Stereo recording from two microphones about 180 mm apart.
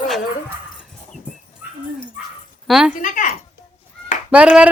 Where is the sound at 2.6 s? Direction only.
Centre (ahead or behind).